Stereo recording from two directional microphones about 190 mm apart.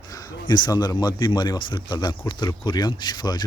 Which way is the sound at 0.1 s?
20° left (ahead or behind).